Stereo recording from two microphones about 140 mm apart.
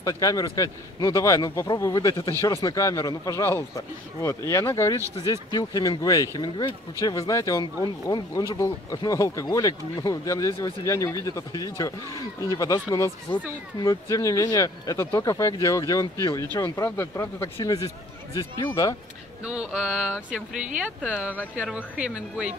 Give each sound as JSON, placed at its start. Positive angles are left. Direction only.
{"t": 0.0, "sound": "speech", "side_deg": 25}
{"t": 19.4, "sound": "speech", "side_deg": -5}